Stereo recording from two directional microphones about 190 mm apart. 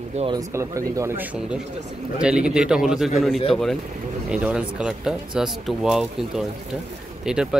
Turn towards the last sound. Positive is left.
turn(degrees=-5)  # may be behind; listen again after turning